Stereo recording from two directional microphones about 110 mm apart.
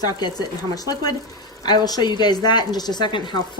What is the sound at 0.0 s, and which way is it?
A woman's voice, 40° left (ahead or behind).